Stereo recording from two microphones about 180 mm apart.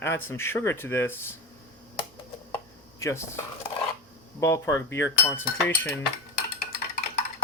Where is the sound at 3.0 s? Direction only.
15° left (ahead or behind).